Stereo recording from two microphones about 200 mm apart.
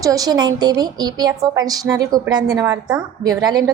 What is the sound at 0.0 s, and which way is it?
A woman's voice, 15° right (ahead or behind).